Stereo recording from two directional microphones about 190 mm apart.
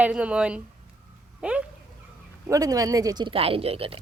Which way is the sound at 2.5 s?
20° right (ahead or behind).